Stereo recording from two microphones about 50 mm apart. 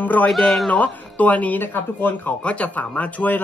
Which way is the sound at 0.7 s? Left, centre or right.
Left.